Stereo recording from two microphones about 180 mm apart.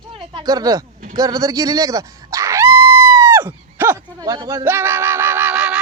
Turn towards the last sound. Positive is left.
turn(degrees=-5)  # may be behind; listen again after turning